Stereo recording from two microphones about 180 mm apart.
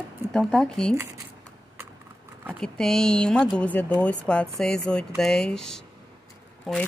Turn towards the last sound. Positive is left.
turn(degrees=0)  # may be behind; listen again after turning